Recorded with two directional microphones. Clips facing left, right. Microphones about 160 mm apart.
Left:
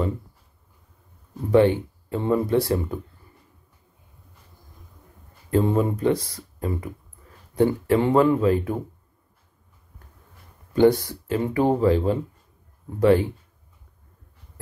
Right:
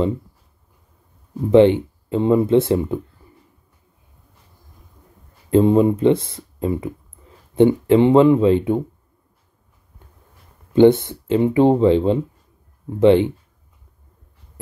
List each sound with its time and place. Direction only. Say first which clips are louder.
1.5 s speech: right 5 dB; 20° right (ahead or behind)
5.5 s speech: right 7 dB; 20° right (ahead or behind)
10.7 s speech: right 5 dB; 25° right (ahead or behind)